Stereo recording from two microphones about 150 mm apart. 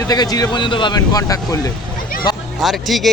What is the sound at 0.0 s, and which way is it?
Speech, 25° left (ahead or behind).